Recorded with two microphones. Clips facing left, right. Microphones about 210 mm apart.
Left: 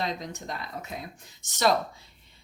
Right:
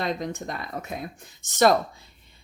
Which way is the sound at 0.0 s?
55° right (ahead or behind).